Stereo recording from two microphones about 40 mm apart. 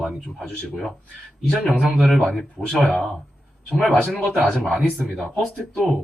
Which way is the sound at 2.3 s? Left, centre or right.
Centre.